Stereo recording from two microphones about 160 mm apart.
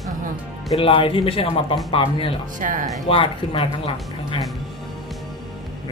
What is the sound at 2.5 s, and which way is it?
Speech, 55° right (ahead or behind).